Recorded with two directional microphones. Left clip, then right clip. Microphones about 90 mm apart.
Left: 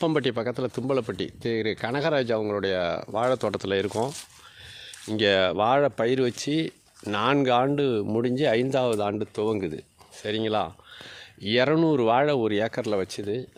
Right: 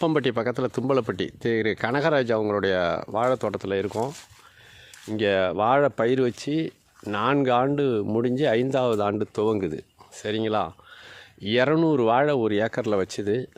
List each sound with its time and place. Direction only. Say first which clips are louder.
0.0 s speech: right 1 dB; 25° right (ahead or behind)
0.3 s speech: right 3 dB; 40° right (ahead or behind)
3.1 s speech: left 1 dB; 15° right (ahead or behind)
3.4 s speech: even; centre (ahead or behind)
5.6 s speech: right 3 dB; 20° right (ahead or behind)
6.0 s speech: right 2 dB; 30° right (ahead or behind)
6.3 s speech: even; 10° right (ahead or behind); by 9.8 s 35° right (ahead or behind)
10.2 s speech: right 1 dB; 25° right (ahead or behind); by 13.2 s 45° right (ahead or behind)
13.2 s speech: right 4 dB; 90° right